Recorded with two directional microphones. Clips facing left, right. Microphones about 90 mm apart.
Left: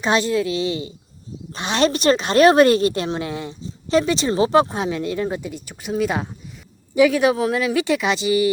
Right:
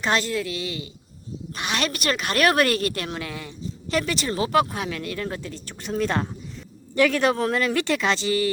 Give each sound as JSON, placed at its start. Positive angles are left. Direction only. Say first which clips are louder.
{"t": 0.0, "sound": "a woman's voice", "louder": "left 5 dB", "side_deg": 20}